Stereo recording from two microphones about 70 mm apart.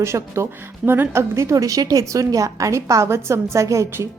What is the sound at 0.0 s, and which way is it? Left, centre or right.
Speech, right.